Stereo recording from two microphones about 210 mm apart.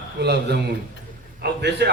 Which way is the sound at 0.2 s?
50° right (ahead or behind).